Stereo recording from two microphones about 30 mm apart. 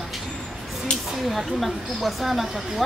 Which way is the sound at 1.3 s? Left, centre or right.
Centre.